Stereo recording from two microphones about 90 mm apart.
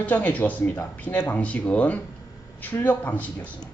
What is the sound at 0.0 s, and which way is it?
Speech, 20° left (ahead or behind).